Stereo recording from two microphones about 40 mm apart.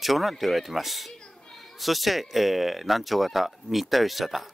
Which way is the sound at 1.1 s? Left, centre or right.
Centre.